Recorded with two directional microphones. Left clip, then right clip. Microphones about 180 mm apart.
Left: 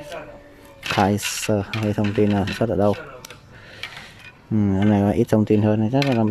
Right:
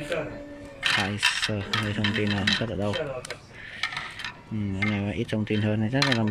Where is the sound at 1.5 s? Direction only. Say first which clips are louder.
Left 5 dB; 25° left (ahead or behind).